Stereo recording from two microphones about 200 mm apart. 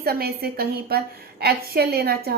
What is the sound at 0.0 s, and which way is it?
A woman's voice, 50° right (ahead or behind).